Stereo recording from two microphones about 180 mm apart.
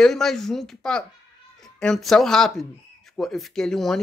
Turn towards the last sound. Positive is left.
turn(degrees=0)  # may be behind; listen again after turning